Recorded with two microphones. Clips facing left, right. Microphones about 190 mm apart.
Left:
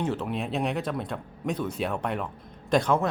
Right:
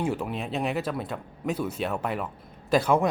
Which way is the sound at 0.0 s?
10° right (ahead or behind).